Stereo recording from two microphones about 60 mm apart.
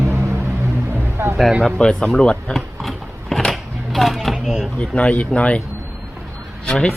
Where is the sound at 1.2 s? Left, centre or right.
Right.